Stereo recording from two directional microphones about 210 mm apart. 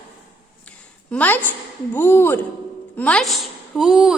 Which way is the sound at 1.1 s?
10° left (ahead or behind).